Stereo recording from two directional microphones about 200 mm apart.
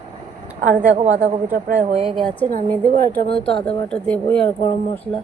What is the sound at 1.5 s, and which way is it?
Speech, 35° right (ahead or behind).